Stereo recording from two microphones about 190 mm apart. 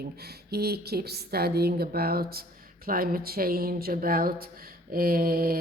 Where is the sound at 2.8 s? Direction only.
50° right (ahead or behind).